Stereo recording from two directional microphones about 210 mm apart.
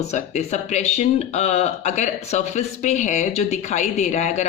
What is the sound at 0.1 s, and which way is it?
Speech, 35° left (ahead or behind).